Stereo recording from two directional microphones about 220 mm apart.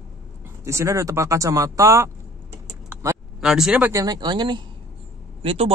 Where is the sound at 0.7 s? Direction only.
15° right (ahead or behind).